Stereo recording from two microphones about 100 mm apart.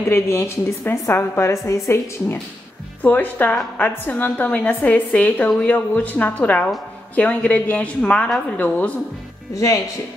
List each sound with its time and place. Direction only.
0.1 s a woman's voice: 25° left (ahead or behind)
3.0 s a woman's voice: 15° left (ahead or behind)
9.5 s speech: 30° left (ahead or behind)